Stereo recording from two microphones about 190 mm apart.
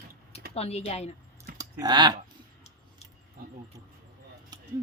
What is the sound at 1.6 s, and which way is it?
Speech, 20° right (ahead or behind).